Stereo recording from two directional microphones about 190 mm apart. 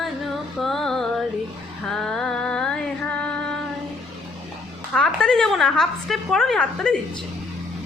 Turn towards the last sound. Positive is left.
turn(degrees=5)  # may be behind; listen again after turning